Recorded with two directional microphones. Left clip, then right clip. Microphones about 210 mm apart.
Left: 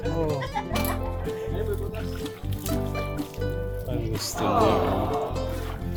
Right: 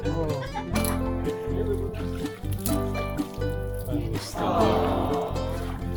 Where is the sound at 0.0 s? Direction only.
Centre (ahead or behind).